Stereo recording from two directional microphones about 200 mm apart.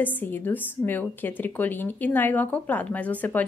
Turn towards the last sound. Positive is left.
turn(degrees=10)  # may be behind; listen again after turning